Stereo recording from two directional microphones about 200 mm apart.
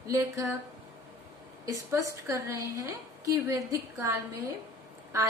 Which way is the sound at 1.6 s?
15° right (ahead or behind).